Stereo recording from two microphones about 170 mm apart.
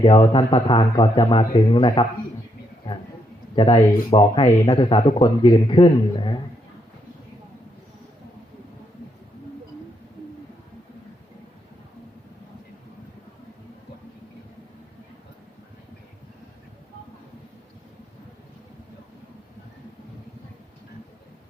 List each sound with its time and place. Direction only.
0.0 s speech: 30° left (ahead or behind)
3.5 s speech: 30° left (ahead or behind)